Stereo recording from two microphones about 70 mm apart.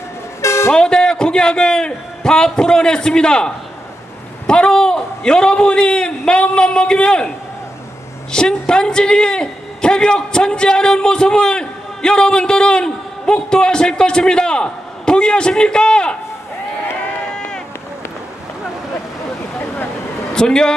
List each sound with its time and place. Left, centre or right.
0.4 s vehicle: left
0.7 s a man's voice: centre
17.3 s run: centre
20.3 s a woman's voice: centre